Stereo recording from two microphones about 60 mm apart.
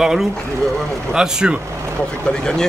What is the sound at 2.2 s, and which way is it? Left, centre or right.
Speech, centre.